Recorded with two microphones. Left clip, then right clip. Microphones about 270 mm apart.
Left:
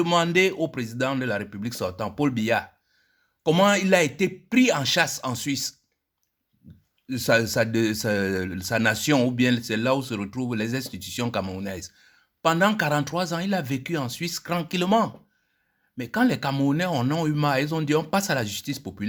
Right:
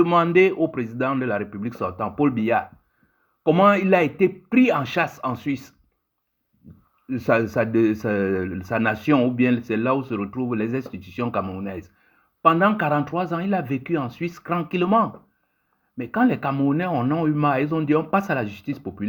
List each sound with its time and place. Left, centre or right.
0.0 s speech: left
7.1 s speech: left